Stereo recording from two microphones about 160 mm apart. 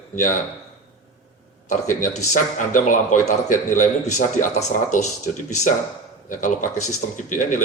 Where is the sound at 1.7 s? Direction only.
50° left (ahead or behind).